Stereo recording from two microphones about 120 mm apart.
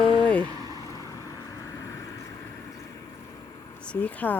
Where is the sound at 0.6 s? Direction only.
30° left (ahead or behind).